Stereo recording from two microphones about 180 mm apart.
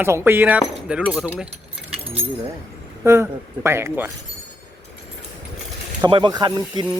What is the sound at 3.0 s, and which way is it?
Speech, 15° right (ahead or behind).